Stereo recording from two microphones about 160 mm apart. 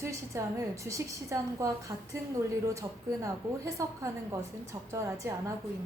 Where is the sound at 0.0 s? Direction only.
20° right (ahead or behind).